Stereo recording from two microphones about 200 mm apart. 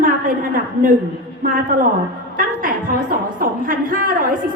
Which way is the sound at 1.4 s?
45° right (ahead or behind).